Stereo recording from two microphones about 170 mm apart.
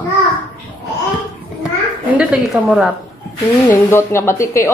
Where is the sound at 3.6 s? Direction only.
15° left (ahead or behind).